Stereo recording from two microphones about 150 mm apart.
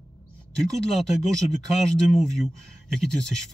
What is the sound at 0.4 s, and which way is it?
Speech, centre (ahead or behind).